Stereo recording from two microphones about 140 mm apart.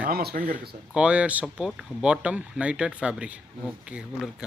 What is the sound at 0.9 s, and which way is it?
Speech, 10° right (ahead or behind).